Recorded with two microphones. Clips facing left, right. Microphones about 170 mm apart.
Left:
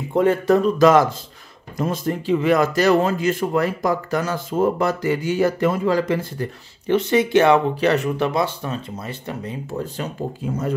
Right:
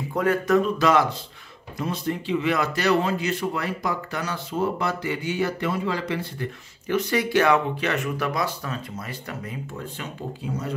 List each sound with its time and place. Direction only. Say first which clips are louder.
0.1 s speech: left 5 dB; 25° left (ahead or behind); by 6.5 s 45° left (ahead or behind)
6.9 s speech: left 6 dB; 25° left (ahead or behind); by 10.7 s 40° left (ahead or behind)